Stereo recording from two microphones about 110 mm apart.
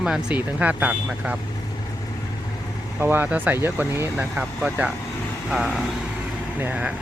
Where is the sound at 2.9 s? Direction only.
20° right (ahead or behind).